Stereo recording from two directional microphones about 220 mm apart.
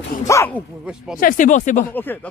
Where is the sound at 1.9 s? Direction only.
10° left (ahead or behind).